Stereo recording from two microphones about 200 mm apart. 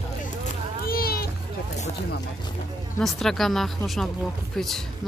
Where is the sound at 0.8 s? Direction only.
50° left (ahead or behind).